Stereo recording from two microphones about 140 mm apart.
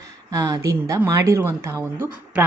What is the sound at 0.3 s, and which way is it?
A woman's voice, 25° right (ahead or behind).